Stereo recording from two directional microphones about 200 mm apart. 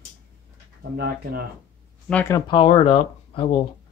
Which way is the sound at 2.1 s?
10° left (ahead or behind).